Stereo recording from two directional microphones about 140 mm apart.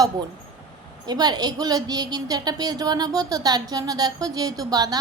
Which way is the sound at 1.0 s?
30° right (ahead or behind).